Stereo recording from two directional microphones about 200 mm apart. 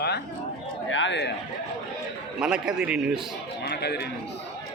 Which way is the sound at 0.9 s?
65° left (ahead or behind).